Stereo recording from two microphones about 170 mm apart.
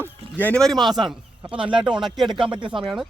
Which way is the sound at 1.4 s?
30° right (ahead or behind).